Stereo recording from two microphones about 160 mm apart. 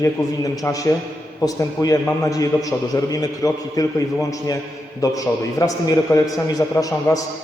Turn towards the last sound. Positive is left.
turn(degrees=20)  # may be behind; listen again after turning